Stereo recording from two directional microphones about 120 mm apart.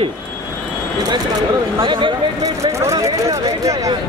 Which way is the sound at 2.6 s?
25° right (ahead or behind).